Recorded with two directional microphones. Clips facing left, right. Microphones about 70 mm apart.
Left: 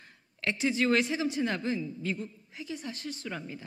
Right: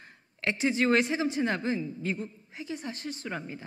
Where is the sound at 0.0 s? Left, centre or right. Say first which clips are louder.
Right 2 dB; right.